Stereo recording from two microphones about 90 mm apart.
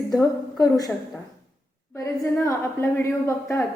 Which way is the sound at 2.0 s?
40° left (ahead or behind).